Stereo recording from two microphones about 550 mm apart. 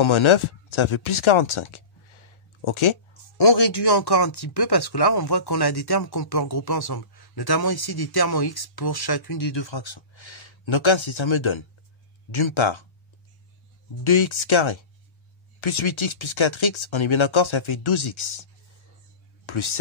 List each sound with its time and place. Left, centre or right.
0.0 s speech: left
14.0 s speech: left